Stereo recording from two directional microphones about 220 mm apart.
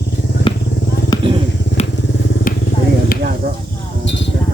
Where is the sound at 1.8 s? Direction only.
30° left (ahead or behind).